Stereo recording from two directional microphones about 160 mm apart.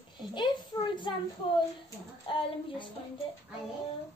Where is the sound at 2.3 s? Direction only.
30° left (ahead or behind).